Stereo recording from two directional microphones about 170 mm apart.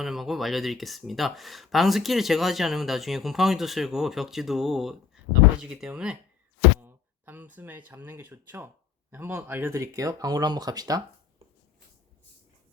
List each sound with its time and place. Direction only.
0.0 s speech: centre (ahead or behind); by 11.0 s 20° right (ahead or behind)